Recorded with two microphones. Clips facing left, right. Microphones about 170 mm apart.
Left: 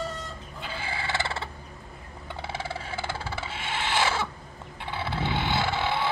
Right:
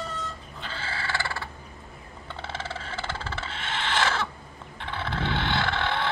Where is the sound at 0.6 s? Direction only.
15° left (ahead or behind).